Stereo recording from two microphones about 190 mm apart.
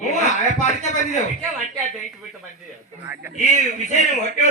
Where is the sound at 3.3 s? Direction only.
40° left (ahead or behind).